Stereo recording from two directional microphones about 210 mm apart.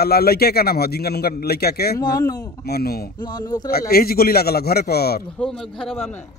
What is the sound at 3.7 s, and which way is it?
Speech, 45° left (ahead or behind).